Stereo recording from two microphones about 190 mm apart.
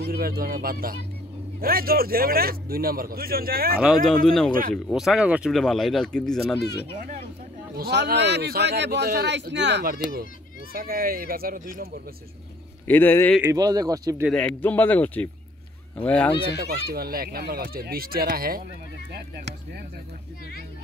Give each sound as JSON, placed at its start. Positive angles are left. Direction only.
{"t": 0.1, "sound": "a man's voice", "side_deg": -55}
{"t": 3.7, "sound": "speech", "side_deg": 0}
{"t": 7.7, "sound": "a man's voice", "side_deg": -60}
{"t": 12.8, "sound": "speech", "side_deg": 10}
{"t": 13.4, "sound": "speech", "side_deg": -15}
{"t": 14.2, "sound": "speech", "side_deg": 5}
{"t": 16.6, "sound": "a man's voice", "side_deg": -50}